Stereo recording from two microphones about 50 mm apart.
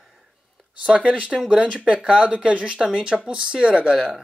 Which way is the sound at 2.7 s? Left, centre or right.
Centre.